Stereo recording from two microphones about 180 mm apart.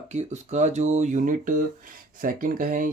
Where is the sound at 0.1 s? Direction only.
40° right (ahead or behind).